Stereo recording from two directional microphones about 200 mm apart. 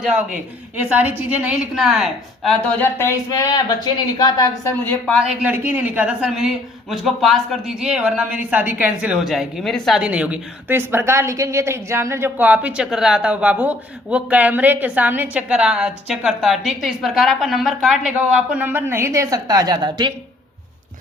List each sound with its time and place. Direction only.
0.0 s a woman's voice: 5° right (ahead or behind); by 4.7 s 20° left (ahead or behind)
5.2 s a woman's voice: 5° right (ahead or behind); by 20.1 s 20° right (ahead or behind)